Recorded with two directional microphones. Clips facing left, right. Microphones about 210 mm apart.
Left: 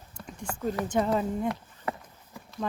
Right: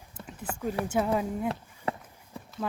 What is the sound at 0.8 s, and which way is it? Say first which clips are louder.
Speech: left 1 dB; 10° right (ahead or behind).